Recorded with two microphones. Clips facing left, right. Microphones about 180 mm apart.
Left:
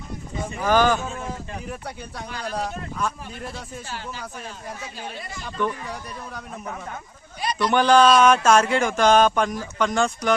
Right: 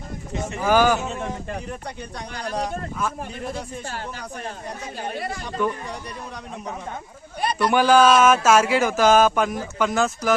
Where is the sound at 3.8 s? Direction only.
50° right (ahead or behind).